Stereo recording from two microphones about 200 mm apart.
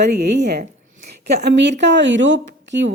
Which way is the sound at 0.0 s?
55° right (ahead or behind).